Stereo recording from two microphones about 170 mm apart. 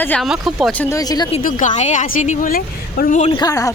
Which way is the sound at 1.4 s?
50° left (ahead or behind).